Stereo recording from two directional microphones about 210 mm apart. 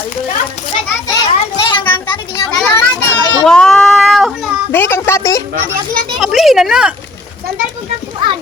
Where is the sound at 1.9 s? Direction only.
20° left (ahead or behind).